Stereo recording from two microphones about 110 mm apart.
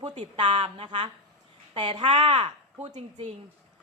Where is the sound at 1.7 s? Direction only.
50° right (ahead or behind).